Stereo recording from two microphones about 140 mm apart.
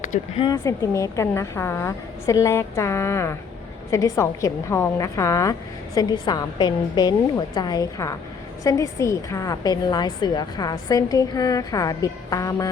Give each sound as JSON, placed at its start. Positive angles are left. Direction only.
{"t": 0.1, "sound": "speech", "side_deg": 65}
{"t": 0.5, "sound": "a woman's voice", "side_deg": 20}